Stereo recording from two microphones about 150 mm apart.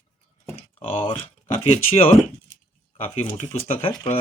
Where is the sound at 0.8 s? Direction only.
35° left (ahead or behind).